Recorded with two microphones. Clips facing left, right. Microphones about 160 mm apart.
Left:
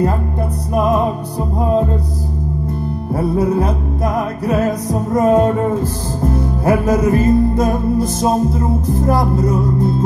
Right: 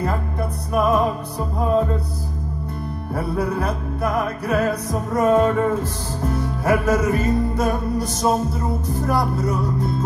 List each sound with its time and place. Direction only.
0.7 s music: 35° left (ahead or behind)
3.2 s music: 25° left (ahead or behind)